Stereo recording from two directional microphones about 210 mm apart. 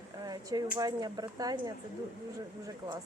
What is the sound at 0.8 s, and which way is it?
Speech, 20° right (ahead or behind).